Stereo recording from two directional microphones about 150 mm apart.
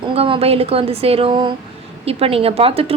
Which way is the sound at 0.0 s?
35° right (ahead or behind).